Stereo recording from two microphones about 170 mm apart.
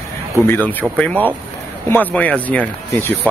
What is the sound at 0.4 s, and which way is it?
Speech, 10° left (ahead or behind).